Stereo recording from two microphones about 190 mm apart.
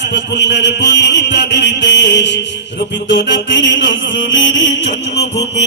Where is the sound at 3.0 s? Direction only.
70° left (ahead or behind).